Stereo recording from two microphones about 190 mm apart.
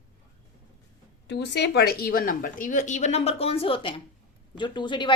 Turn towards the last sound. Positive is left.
turn(degrees=25)  # may be behind; listen again after turning